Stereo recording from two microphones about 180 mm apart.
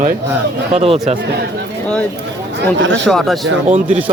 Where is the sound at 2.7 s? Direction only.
90° right.